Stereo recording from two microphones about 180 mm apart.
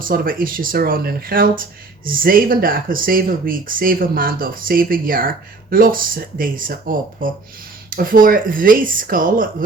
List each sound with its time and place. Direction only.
0.0 s speech: 50° right (ahead or behind)